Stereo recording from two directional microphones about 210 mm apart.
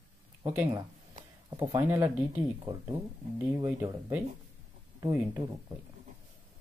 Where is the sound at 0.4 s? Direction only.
15° right (ahead or behind).